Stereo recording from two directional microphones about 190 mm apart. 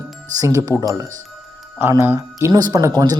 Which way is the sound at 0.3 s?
15° right (ahead or behind).